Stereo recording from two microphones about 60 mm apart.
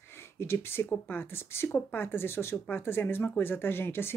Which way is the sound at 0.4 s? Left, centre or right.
Left.